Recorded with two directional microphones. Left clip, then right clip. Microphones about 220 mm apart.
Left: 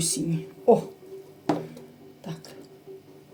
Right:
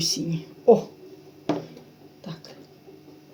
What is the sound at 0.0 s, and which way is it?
Speech, 20° right (ahead or behind).